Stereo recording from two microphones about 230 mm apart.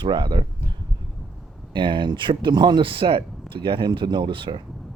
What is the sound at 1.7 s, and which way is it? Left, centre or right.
Speech, right.